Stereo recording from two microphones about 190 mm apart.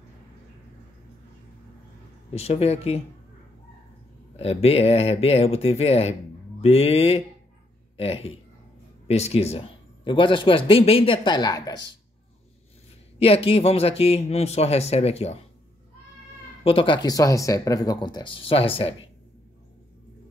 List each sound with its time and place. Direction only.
2.3 s speech: 35° left (ahead or behind)
4.4 s speech: 30° left (ahead or behind)
13.2 s speech: 30° left (ahead or behind)
16.6 s speech: 25° left (ahead or behind)